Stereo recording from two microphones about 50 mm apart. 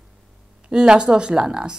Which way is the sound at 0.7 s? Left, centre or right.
Centre.